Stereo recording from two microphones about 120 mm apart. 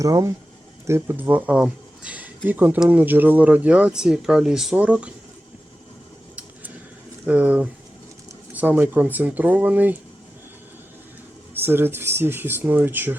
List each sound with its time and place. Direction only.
0.0 s speech: 25° right (ahead or behind); by 5.1 s 10° right (ahead or behind)
7.3 s speech: 15° right (ahead or behind)
11.6 s speech: 20° right (ahead or behind)